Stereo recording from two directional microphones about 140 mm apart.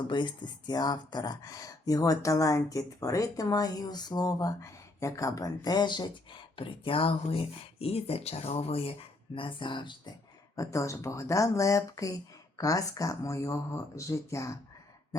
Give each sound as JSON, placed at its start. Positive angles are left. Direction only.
{"t": 0.0, "sound": "speech", "side_deg": 35}
{"t": 10.5, "sound": "speech", "side_deg": 25}